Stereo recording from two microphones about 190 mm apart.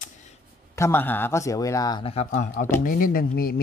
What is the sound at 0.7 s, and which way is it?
Speech, 15° left (ahead or behind).